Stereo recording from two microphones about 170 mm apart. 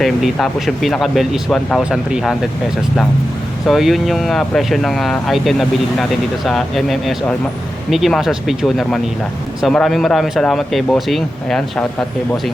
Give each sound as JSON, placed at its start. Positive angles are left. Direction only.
{"t": 0.0, "sound": "speech", "side_deg": 0}
{"t": 3.7, "sound": "speech", "side_deg": 0}